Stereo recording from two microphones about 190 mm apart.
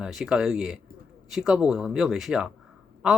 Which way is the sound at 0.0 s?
5° right (ahead or behind).